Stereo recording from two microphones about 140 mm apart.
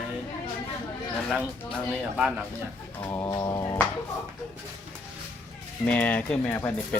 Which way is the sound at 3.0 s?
25° left (ahead or behind).